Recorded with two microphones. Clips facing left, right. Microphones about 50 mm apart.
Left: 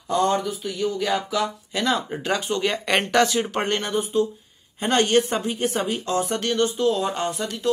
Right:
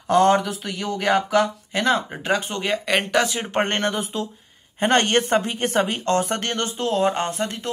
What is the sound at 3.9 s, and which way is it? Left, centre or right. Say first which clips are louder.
Speech: left 5 dB; right.